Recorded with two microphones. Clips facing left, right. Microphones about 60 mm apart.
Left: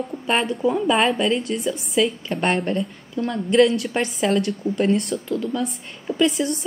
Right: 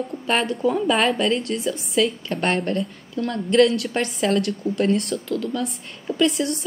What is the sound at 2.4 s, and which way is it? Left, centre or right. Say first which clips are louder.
A woman's voice: left 1 dB; centre.